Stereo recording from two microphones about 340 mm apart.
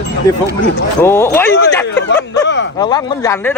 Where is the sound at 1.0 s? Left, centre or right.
Centre.